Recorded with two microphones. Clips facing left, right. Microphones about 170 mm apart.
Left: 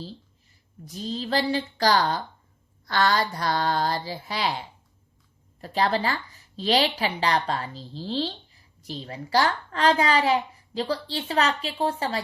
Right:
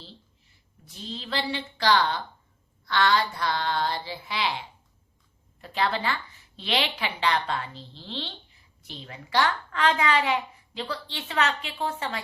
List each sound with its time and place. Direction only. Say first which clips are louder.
0.9 s a woman's voice: left 7 dB; 40° left (ahead or behind)